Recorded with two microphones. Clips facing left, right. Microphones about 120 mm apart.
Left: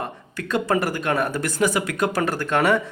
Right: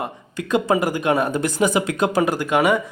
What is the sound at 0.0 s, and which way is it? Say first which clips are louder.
Speech: right 2 dB; 15° right (ahead or behind).